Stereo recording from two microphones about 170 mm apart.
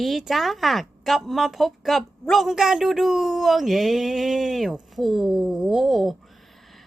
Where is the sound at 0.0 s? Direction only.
Centre (ahead or behind).